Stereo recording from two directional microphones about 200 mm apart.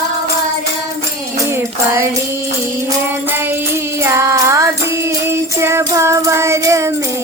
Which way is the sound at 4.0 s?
15° right (ahead or behind).